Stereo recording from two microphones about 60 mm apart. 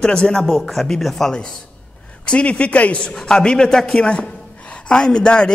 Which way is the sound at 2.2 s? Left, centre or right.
Centre.